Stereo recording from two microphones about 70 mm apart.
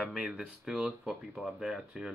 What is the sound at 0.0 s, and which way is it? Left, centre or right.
Speech, centre.